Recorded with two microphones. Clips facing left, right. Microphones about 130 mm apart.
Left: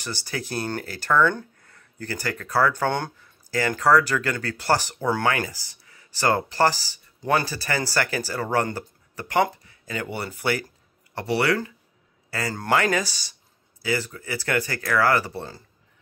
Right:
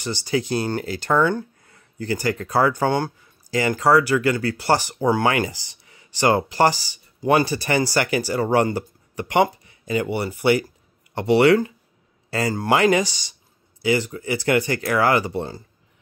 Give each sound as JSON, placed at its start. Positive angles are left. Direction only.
{"t": 0.0, "sound": "speech", "side_deg": -15}